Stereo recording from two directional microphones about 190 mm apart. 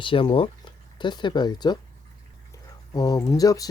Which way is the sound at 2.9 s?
20° left (ahead or behind).